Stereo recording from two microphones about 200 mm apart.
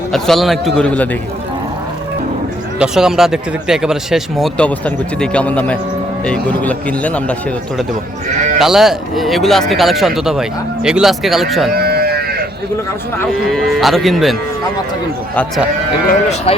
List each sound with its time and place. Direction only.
0.1 s speech: centre (ahead or behind)
2.7 s a man's voice: 5° right (ahead or behind)
8.5 s speech: centre (ahead or behind)
11.7 s a sound: 50° right (ahead or behind)
13.5 s speech: centre (ahead or behind)
16.5 s speech: 30° left (ahead or behind)